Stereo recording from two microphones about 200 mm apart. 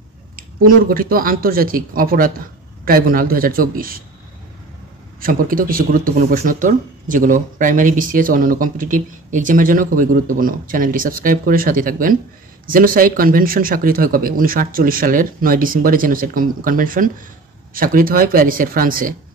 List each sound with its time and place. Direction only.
0.4 s speech: 45° right (ahead or behind)
5.2 s speech: 45° right (ahead or behind)